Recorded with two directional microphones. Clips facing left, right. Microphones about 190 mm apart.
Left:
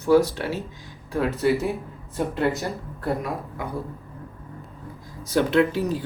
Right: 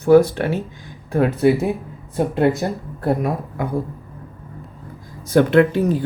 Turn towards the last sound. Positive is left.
turn(degrees=-55)  # may be behind; listen again after turning